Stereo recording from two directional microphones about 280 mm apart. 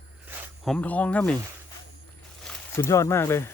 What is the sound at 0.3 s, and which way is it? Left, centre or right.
Speech, centre.